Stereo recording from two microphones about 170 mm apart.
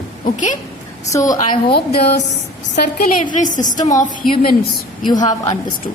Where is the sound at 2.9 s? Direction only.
50° left (ahead or behind).